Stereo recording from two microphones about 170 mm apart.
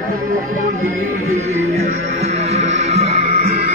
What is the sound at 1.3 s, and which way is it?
Music, 40° right (ahead or behind).